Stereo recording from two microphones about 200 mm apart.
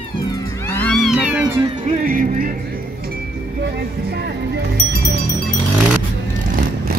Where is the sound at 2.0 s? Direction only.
45° right (ahead or behind).